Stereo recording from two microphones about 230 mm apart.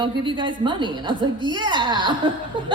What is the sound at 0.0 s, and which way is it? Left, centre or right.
Speech, right.